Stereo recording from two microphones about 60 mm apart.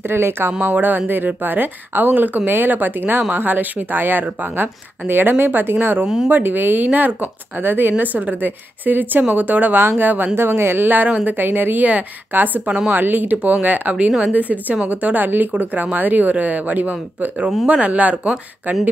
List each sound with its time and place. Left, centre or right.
0.1 s speech: right
0.5 s speech: right